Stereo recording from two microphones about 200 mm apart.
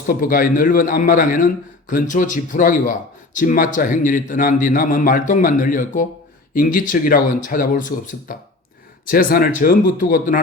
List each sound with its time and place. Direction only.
0.1 s speech: 45° left (ahead or behind)